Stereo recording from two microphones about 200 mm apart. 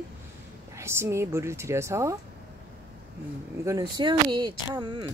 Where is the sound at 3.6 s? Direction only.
20° right (ahead or behind).